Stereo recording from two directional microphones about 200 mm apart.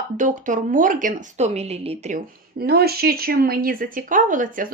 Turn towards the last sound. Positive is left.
turn(degrees=-40)  # may be behind; listen again after turning